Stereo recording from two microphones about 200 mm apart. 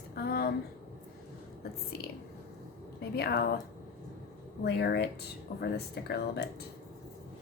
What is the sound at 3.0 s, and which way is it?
Speech, 55° left (ahead or behind).